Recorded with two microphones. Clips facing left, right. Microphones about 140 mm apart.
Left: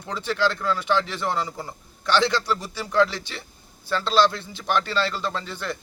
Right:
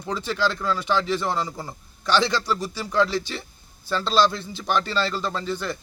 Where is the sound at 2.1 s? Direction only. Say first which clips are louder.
Even; 10° right (ahead or behind).